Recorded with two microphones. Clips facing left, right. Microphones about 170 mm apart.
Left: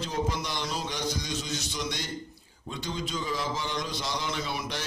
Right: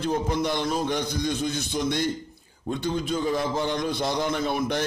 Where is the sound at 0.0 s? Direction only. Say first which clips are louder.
Right 6 dB; 55° right (ahead or behind).